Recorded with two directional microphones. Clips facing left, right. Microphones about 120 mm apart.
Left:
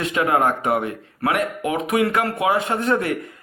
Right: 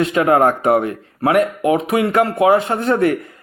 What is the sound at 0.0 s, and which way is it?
Speech, 35° right (ahead or behind).